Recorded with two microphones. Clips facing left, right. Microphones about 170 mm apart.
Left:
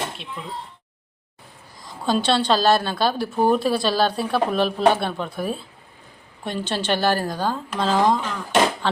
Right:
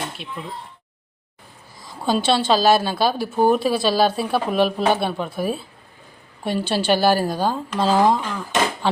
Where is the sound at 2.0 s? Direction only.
5° right (ahead or behind).